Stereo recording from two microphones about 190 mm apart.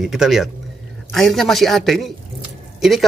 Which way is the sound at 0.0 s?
Centre (ahead or behind).